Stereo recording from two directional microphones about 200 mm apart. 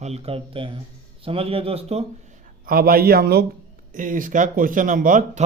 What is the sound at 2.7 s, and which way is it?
A man's voice, 45° right (ahead or behind).